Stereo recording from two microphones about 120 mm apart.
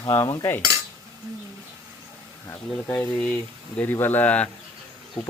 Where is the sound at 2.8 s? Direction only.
15° left (ahead or behind).